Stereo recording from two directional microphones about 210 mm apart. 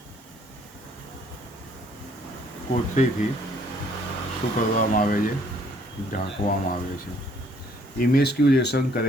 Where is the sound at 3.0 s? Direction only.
35° left (ahead or behind).